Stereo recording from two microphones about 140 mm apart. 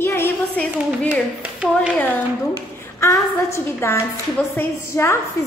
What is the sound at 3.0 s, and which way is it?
A woman's voice, 20° left (ahead or behind).